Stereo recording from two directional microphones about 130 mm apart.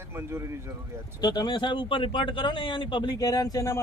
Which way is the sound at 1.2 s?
35° left (ahead or behind).